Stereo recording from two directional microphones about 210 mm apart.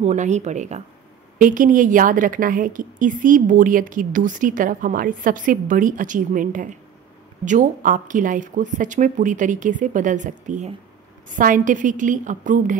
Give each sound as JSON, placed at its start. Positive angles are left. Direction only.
{"t": 0.0, "sound": "a woman's voice", "side_deg": -35}